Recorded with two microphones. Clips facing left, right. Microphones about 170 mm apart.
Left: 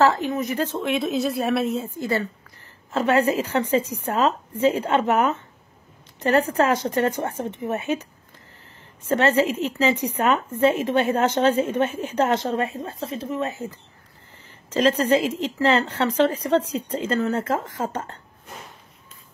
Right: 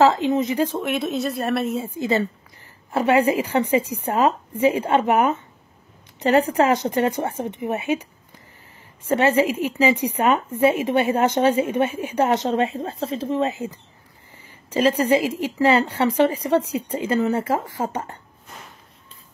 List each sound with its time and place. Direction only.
0.0 s a woman's voice: 20° right (ahead or behind); by 1.9 s centre (ahead or behind)
2.0 s a woman's voice: 20° right (ahead or behind)
9.1 s a woman's voice: 10° right (ahead or behind)
13.0 s speech: 30° right (ahead or behind)
13.6 s a woman's voice: 20° right (ahead or behind)